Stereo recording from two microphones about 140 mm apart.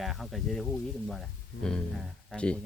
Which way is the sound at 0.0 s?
Centre (ahead or behind).